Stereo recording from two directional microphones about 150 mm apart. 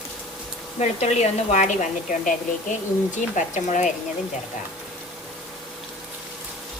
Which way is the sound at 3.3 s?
55° left (ahead or behind).